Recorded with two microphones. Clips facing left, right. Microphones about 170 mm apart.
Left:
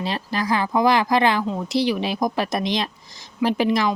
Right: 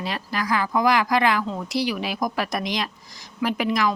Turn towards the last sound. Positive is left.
turn(degrees=25)  # may be behind; listen again after turning